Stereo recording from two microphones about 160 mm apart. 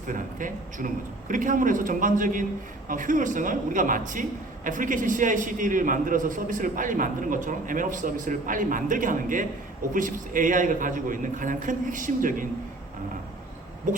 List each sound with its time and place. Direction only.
0.1 s speech: 55° right (ahead or behind)